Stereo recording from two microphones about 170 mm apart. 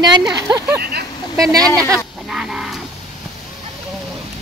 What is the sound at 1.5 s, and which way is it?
Speech, 20° right (ahead or behind).